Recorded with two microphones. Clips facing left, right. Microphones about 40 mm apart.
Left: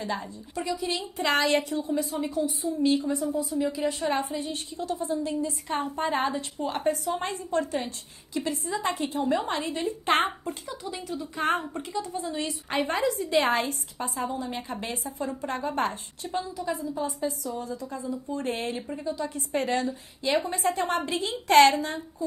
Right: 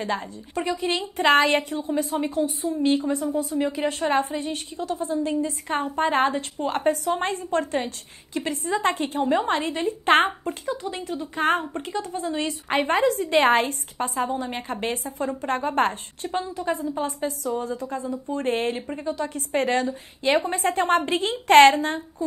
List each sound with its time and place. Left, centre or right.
0.0 s a woman's voice: right